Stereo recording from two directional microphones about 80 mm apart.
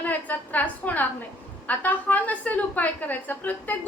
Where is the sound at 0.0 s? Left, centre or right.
Centre.